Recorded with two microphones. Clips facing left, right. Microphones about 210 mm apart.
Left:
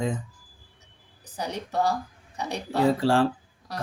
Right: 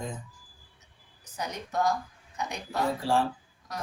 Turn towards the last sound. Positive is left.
turn(degrees=90)